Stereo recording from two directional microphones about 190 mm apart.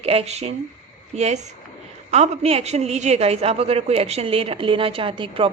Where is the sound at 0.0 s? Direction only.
30° right (ahead or behind).